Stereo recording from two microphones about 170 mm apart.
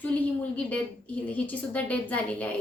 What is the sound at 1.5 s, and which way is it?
A woman's voice, 10° left (ahead or behind).